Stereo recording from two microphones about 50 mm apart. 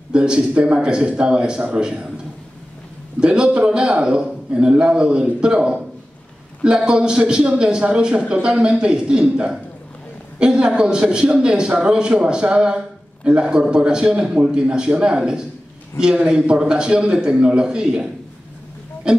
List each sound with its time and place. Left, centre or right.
0.1 s speech: centre
3.2 s a man's voice: centre
19.1 s a man's voice: centre